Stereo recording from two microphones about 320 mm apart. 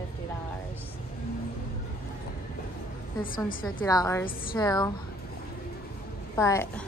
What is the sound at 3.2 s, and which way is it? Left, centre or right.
Speech, left.